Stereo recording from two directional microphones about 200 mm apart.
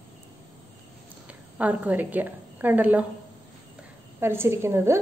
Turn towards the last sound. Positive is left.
turn(degrees=-15)  # may be behind; listen again after turning